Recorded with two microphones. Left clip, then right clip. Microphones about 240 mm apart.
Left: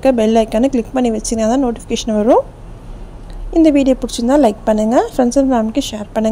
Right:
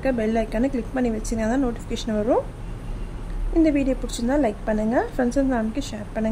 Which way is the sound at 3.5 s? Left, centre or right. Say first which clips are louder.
Left 9 dB; left.